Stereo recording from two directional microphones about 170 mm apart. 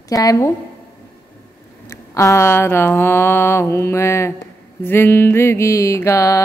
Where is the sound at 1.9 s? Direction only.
15° left (ahead or behind).